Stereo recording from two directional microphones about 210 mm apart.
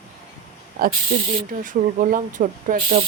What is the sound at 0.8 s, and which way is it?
Speech, 45° right (ahead or behind).